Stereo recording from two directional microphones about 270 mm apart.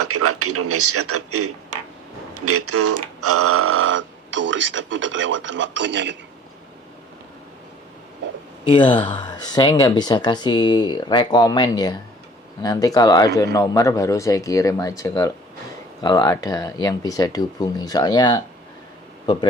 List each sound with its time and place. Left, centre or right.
0.0 s speech: right
8.6 s speech: centre